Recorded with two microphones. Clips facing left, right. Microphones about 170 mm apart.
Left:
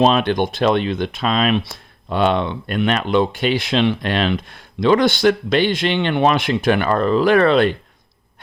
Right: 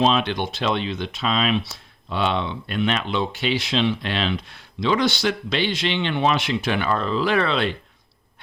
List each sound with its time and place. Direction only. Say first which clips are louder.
0.0 s speech: left 5 dB; 50° left (ahead or behind)